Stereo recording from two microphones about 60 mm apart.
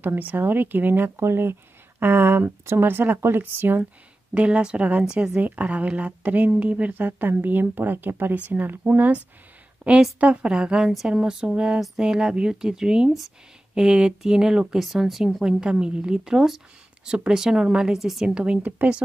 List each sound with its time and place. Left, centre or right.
0.0 s speech: right
4.3 s a woman's voice: centre
5.4 s a woman's voice: right; by 18.3 s centre
18.3 s speech: centre